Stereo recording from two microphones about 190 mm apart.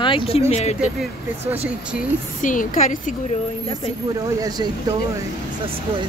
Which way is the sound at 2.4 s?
45° left (ahead or behind).